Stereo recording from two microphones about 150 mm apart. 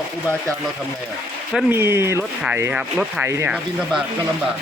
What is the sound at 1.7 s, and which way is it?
Speech, 15° right (ahead or behind).